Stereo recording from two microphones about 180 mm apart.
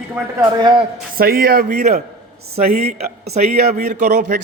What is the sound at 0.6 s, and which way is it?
Speech, 25° right (ahead or behind).